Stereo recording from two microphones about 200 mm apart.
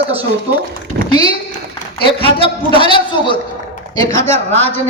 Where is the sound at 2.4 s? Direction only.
25° left (ahead or behind).